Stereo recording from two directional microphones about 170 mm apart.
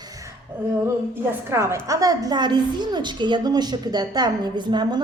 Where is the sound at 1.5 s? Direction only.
15° right (ahead or behind).